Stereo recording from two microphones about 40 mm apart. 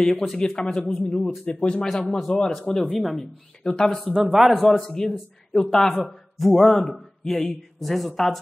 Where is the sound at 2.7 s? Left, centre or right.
Centre.